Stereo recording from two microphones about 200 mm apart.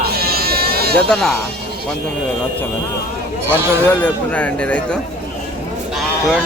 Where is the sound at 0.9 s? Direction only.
Centre (ahead or behind).